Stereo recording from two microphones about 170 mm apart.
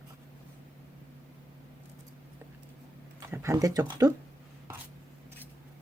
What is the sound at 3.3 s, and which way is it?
Speech, 15° right (ahead or behind).